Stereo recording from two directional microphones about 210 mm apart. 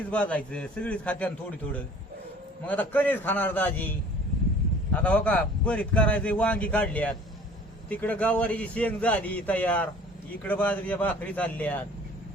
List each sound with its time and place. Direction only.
0.1 s a man's voice: 5° left (ahead or behind)
2.6 s a man's voice: 10° left (ahead or behind)
4.9 s a man's voice: 5° left (ahead or behind)